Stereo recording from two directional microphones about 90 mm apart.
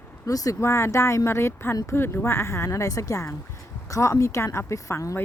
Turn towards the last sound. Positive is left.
turn(degrees=35)  # may be behind; listen again after turning